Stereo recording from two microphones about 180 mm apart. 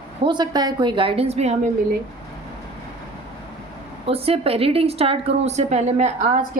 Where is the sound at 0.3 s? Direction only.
25° right (ahead or behind).